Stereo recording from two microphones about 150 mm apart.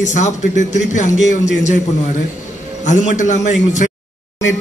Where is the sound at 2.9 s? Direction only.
55° left (ahead or behind).